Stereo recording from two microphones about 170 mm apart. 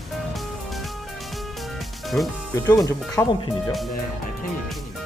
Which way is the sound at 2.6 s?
20° left (ahead or behind).